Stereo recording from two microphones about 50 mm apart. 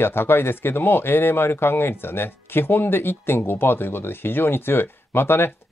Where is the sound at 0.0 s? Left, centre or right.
Left.